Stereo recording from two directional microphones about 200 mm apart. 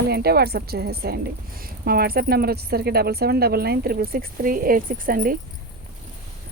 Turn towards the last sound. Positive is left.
turn(degrees=-45)  # may be behind; listen again after turning